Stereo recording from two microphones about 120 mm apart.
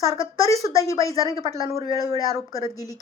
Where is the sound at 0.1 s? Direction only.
25° left (ahead or behind).